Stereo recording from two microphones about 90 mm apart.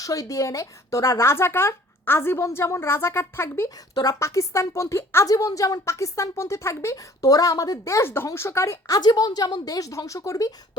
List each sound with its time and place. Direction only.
0.0 s a woman's voice: 40° left (ahead or behind)
9.0 s a woman's voice: 50° left (ahead or behind)